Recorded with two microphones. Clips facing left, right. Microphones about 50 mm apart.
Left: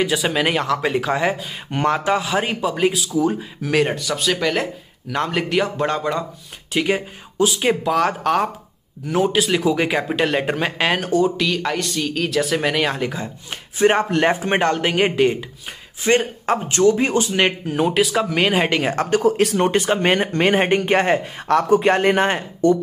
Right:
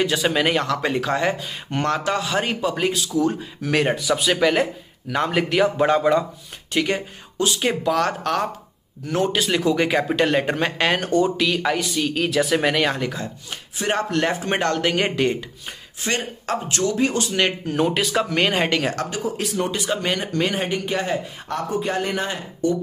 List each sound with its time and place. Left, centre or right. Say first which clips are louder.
0.0 s speech: left 1 dB; centre
6.7 s speech: left 2 dB; centre
13.5 s speech: left 9 dB; left
14.2 s speech: left 4 dB; centre
16.1 s speech: left 7 dB; left
17.7 s speech: left 2 dB; centre
19.0 s speech: left 9 dB; left
19.3 s speech: left 7 dB; left